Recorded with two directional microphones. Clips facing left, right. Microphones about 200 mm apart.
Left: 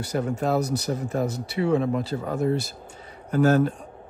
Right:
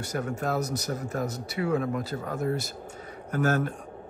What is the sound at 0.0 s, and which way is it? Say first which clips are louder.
Speech: left 5 dB; 30° left (ahead or behind).